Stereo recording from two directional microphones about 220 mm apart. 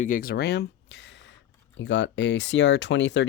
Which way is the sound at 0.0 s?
40° left (ahead or behind).